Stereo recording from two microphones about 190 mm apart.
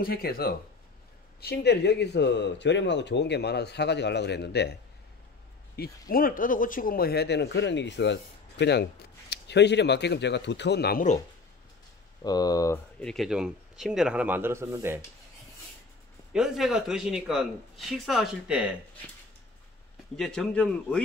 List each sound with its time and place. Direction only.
0.0 s speech: 55° left (ahead or behind)
5.8 s speech: 50° left (ahead or behind)
12.2 s speech: 20° left (ahead or behind)
13.0 s speech: centre (ahead or behind)
16.3 s speech: centre (ahead or behind)
20.2 s speech: 5° left (ahead or behind)